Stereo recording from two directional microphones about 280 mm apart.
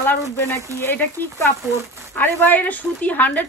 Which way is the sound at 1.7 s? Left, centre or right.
Centre.